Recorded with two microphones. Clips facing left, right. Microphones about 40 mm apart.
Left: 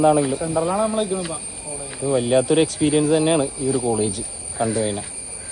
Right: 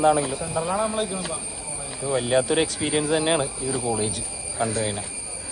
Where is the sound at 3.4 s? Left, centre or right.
Right.